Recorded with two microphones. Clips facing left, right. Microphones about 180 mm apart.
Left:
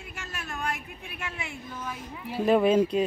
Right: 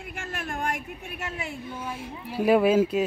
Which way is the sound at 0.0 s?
55° right (ahead or behind).